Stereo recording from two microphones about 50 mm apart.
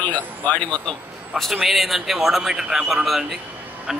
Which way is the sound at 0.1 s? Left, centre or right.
Left.